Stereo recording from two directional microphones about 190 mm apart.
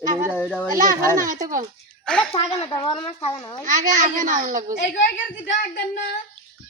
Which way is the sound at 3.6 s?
45° right (ahead or behind).